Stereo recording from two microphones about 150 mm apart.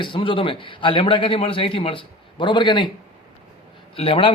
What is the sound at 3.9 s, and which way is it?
Speech, 40° left (ahead or behind).